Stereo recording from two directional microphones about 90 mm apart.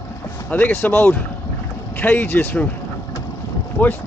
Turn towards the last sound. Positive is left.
turn(degrees=20)  # may be behind; listen again after turning